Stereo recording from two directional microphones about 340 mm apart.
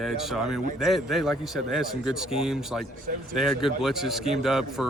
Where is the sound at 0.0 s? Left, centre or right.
Centre.